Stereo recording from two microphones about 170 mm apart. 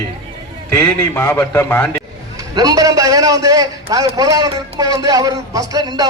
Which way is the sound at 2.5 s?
20° right (ahead or behind).